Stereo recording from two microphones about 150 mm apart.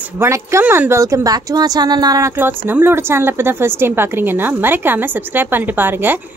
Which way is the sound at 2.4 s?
15° right (ahead or behind).